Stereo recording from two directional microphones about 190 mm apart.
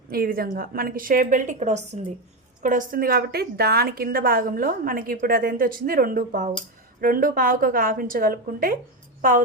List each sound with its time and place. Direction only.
0.1 s a woman's voice: 50° right (ahead or behind)